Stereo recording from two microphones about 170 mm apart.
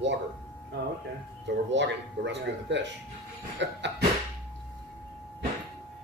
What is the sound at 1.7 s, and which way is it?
Speech, 90° right.